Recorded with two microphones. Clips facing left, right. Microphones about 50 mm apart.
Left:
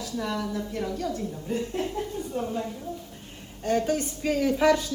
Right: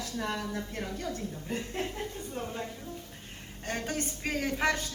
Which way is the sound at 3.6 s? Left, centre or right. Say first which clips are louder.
Left 9 dB; right.